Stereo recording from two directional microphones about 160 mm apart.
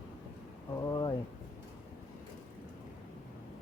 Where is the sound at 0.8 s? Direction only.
25° left (ahead or behind).